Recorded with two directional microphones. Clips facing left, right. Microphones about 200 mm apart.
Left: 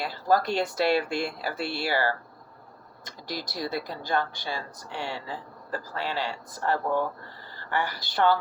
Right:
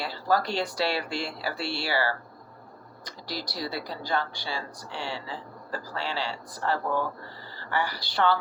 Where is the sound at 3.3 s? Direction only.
50° left (ahead or behind).